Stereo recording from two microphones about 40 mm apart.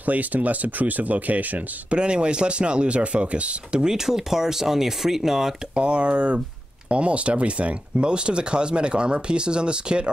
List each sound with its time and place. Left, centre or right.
0.0 s speech: right
1.9 s speech: right
3.8 s speech: centre
5.8 s speech: right